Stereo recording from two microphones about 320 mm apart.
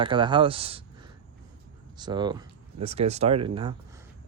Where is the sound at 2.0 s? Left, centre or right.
Centre.